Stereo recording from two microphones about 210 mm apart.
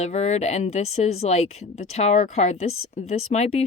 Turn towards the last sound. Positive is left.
turn(degrees=30)  # may be behind; listen again after turning